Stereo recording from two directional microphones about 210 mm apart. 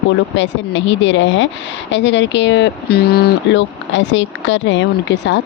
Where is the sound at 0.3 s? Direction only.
60° left (ahead or behind).